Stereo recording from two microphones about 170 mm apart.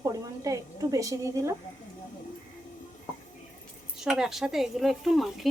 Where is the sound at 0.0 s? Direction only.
20° right (ahead or behind).